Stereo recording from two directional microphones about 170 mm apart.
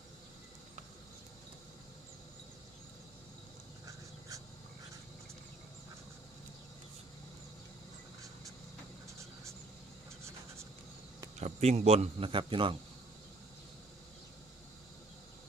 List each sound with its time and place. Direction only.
11.3 s a man's voice: 40° right (ahead or behind)